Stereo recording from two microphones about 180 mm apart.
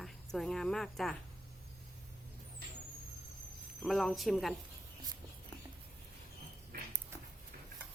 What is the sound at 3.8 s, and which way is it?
Speech, centre (ahead or behind).